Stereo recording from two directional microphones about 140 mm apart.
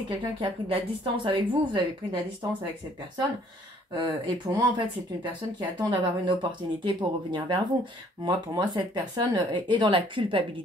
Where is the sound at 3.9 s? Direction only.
25° right (ahead or behind).